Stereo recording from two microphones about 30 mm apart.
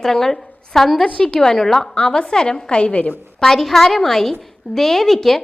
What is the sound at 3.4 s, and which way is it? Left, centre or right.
A woman's voice, centre.